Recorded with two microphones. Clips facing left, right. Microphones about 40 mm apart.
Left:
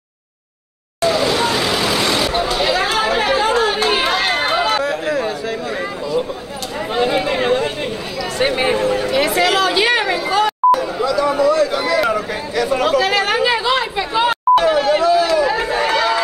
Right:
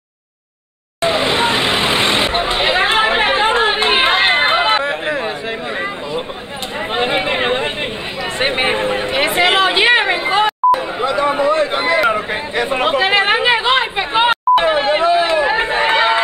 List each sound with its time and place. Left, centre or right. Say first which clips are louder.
1.0 s vehicle: right 1 dB; right
6.9 s chatter: even; right